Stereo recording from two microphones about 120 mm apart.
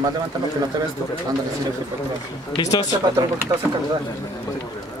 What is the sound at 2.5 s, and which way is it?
Speech, 35° left (ahead or behind).